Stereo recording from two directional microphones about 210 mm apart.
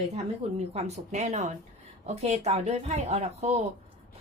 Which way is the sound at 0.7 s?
30° right (ahead or behind).